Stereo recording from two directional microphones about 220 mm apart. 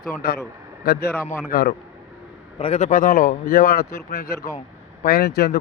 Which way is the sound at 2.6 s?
30° left (ahead or behind).